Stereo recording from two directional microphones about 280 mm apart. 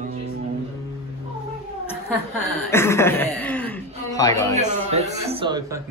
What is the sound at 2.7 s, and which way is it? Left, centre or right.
Chuckle, centre.